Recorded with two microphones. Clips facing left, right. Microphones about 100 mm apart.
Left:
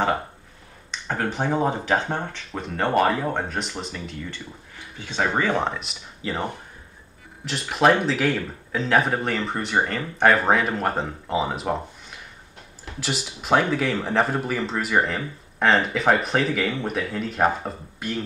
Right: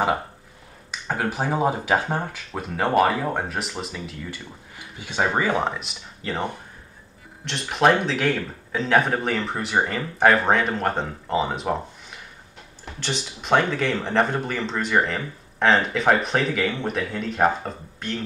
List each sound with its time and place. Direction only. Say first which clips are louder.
0.9 s speech: even; 5° right (ahead or behind)